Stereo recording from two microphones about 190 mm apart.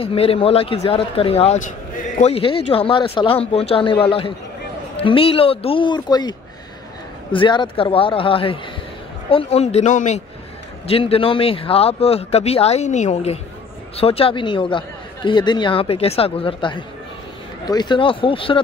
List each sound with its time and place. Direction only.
0.0 s speech: 30° left (ahead or behind)
7.3 s speech: 25° left (ahead or behind)